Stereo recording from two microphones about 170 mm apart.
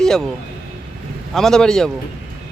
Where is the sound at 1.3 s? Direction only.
5° left (ahead or behind).